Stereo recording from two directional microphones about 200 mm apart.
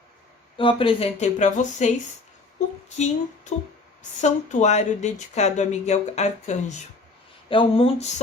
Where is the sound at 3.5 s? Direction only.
35° left (ahead or behind).